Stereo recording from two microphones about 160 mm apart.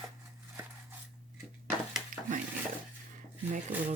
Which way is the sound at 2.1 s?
55° right (ahead or behind).